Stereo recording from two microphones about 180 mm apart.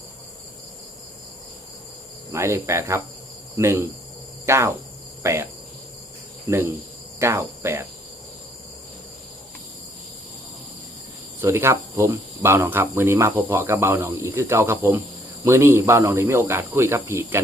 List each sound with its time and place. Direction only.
2.3 s speech: 15° right (ahead or behind)
4.4 s cricket: 15° right (ahead or behind)
6.5 s speech: 15° right (ahead or behind)
11.3 s speech: 15° right (ahead or behind)